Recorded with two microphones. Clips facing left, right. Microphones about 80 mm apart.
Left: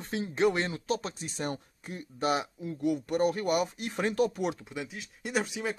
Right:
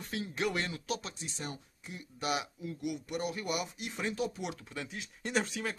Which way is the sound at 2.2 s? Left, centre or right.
Left.